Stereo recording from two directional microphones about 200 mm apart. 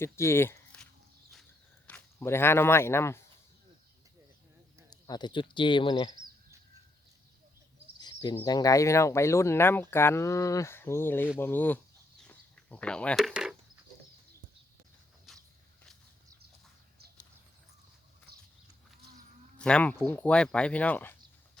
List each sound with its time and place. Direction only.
0.0 s speech: 15° left (ahead or behind)
1.9 s speech: 10° left (ahead or behind)
4.9 s speech: 20° left (ahead or behind)
8.0 s speech: 20° left (ahead or behind)
12.2 s a sound: 5° left (ahead or behind)
15.3 s walk: centre (ahead or behind)
18.3 s horse: 50° right (ahead or behind)
19.5 s speech: 5° left (ahead or behind)